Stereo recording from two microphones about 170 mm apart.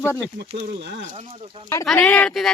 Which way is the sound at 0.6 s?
85° right.